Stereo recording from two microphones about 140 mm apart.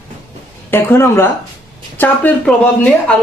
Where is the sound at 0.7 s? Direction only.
15° left (ahead or behind).